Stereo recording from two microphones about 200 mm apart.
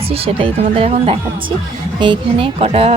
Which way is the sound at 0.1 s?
30° right (ahead or behind).